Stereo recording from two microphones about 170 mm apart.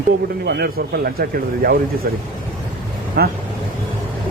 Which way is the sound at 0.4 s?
65° right (ahead or behind).